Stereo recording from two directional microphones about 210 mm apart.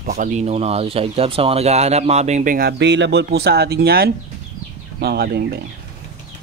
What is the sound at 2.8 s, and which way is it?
Speech, 55° right (ahead or behind).